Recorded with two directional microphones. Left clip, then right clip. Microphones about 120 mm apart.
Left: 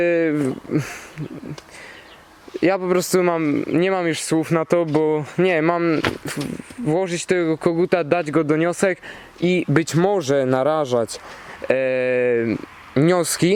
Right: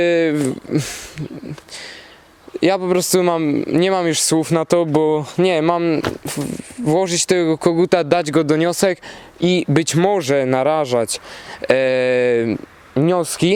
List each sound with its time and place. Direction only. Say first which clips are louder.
0.0 s speech: right 3 dB; 45° right (ahead or behind)
2.6 s speech: right 2 dB; 45° right (ahead or behind)
2.8 s speech: right 2 dB; 10° right (ahead or behind)
3.3 s speech: right 2 dB; 30° right (ahead or behind)
4.4 s speech: right 1 dB; 20° right (ahead or behind)
5.5 s speech: right 2 dB; 40° right (ahead or behind)
6.0 s speech: even; 10° right (ahead or behind)
6.8 s speech: right 4 dB; 25° right (ahead or behind)
9.7 s speech: right 2 dB; 10° right (ahead or behind)
11.7 s speech: right 4 dB; 35° right (ahead or behind)
12.9 s speech: right 1 dB; 5° left (ahead or behind)